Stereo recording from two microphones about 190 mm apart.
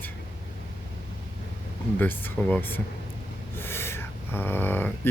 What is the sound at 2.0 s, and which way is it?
Speech, 10° left (ahead or behind).